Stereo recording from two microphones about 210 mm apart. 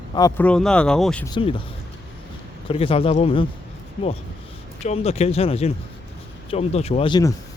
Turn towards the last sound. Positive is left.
turn(degrees=20)  # may be behind; listen again after turning